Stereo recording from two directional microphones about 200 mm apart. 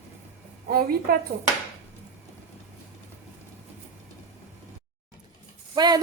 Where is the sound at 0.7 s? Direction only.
50° right (ahead or behind).